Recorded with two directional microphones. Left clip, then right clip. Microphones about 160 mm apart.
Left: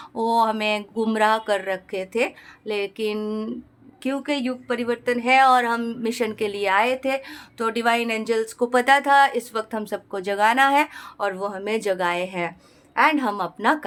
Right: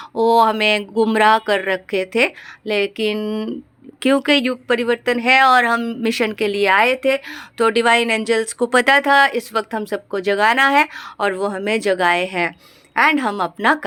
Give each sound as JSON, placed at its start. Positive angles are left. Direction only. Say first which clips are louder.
{"t": 0.1, "sound": "a woman's voice", "louder": "right 6 dB", "side_deg": -20}
{"t": 4.0, "sound": "a woman's voice", "louder": "right 10 dB", "side_deg": -40}
{"t": 6.0, "sound": "a woman's voice", "louder": "right 5 dB", "side_deg": -30}
{"t": 11.2, "sound": "a woman's voice", "louder": "right 6 dB", "side_deg": -30}